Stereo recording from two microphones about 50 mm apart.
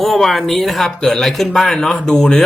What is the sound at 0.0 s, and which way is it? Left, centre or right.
Speech, centre.